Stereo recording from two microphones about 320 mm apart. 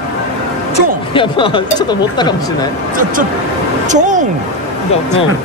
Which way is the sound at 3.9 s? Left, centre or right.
Right.